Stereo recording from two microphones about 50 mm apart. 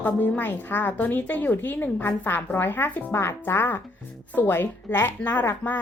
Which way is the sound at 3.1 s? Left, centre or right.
Left.